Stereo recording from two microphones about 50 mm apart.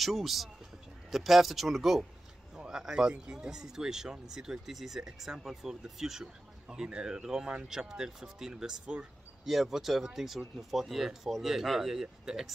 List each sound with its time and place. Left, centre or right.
0.0 s speech: centre
6.7 s speech: centre